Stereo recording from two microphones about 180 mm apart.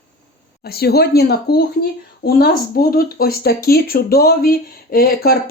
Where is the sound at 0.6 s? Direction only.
60° left (ahead or behind).